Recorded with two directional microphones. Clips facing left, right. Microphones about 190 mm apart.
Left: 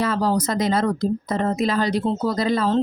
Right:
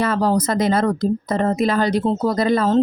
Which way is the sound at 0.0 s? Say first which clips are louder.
Right 3 dB; 55° right (ahead or behind).